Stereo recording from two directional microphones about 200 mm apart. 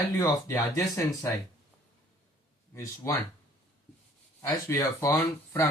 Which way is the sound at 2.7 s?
15° left (ahead or behind).